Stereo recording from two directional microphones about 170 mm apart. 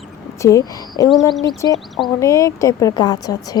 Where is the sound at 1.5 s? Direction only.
25° left (ahead or behind).